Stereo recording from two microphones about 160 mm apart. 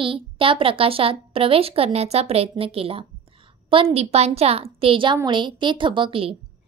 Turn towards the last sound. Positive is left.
turn(degrees=-35)  # may be behind; listen again after turning